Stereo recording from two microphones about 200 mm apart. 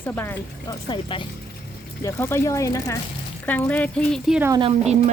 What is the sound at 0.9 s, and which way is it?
Speech, 25° left (ahead or behind).